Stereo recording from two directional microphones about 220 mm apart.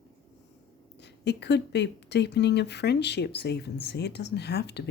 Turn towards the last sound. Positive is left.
turn(degrees=50)  # may be behind; listen again after turning